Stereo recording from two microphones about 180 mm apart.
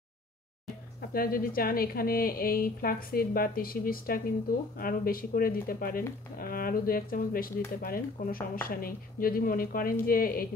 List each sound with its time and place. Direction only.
1.1 s a woman's voice: 55° left (ahead or behind)